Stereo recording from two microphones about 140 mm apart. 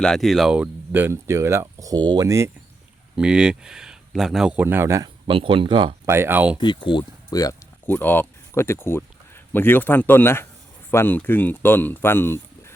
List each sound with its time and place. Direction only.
0.0 s speech: centre (ahead or behind); by 2.5 s 20° right (ahead or behind)
3.2 s speech: 5° right (ahead or behind)
5.0 s speech: 40° right (ahead or behind)
6.1 s speech: 15° right (ahead or behind)
6.8 s speech: 30° left (ahead or behind)
7.9 s speech: 15° left (ahead or behind)